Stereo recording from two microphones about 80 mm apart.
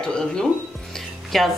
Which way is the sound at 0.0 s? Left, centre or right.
Centre.